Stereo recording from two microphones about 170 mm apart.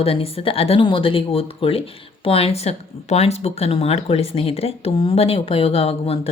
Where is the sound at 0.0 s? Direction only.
35° left (ahead or behind).